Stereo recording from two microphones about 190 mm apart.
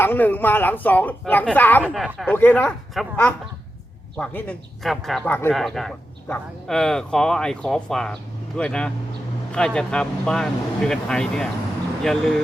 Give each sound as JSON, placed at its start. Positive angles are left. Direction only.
{"t": 0.0, "sound": "speech", "side_deg": 10}
{"t": 1.8, "sound": "speech", "side_deg": -5}
{"t": 4.2, "sound": "speech", "side_deg": 10}